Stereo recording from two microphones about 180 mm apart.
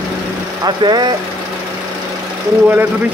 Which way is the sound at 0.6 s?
25° right (ahead or behind).